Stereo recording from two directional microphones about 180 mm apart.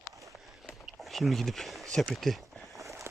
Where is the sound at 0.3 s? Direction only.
Centre (ahead or behind).